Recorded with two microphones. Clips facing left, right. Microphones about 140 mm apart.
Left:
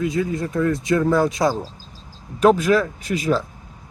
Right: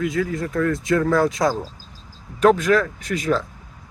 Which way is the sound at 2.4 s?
5° left (ahead or behind).